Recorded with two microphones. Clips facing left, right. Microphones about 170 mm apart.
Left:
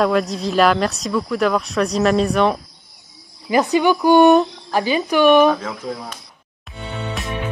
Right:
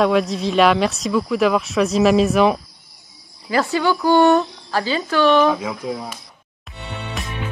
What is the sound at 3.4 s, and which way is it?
Speech, 20° left (ahead or behind).